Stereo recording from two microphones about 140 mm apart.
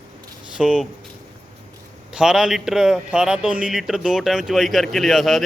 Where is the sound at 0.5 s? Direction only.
5° right (ahead or behind).